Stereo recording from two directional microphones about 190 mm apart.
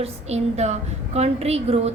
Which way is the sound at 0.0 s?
35° right (ahead or behind).